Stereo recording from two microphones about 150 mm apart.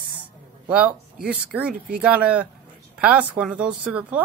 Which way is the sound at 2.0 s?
10° right (ahead or behind).